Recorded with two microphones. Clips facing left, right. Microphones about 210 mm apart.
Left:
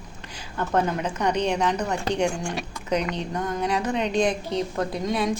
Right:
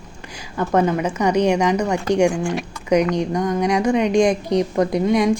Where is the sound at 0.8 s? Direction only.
5° right (ahead or behind).